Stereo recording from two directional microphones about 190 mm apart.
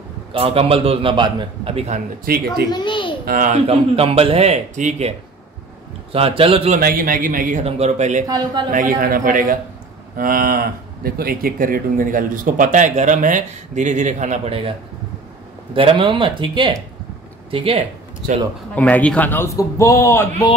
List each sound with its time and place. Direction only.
0.3 s a man's voice: 30° right (ahead or behind)
2.2 s cattle: 50° right (ahead or behind)
2.7 s a child's voice: 25° left (ahead or behind)
3.3 s a man's voice: 45° right (ahead or behind)
6.1 s a man's voice: 30° right (ahead or behind)
6.8 s cattle: 50° right (ahead or behind)
8.3 s a man's voice: 20° right (ahead or behind)
8.7 s cattle: 45° right (ahead or behind); by 14.8 s 30° right (ahead or behind)
15.7 s a man's voice: 25° right (ahead or behind)
18.8 s a man's voice: 10° left (ahead or behind)